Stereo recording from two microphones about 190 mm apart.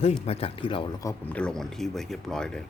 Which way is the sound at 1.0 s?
5° left (ahead or behind).